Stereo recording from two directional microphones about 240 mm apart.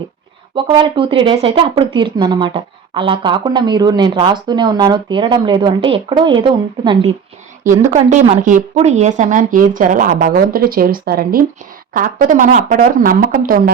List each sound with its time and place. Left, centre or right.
0.5 s speech: right
7.9 s speech: right